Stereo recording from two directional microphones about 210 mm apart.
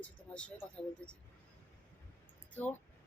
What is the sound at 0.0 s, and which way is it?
Speech, 5° left (ahead or behind).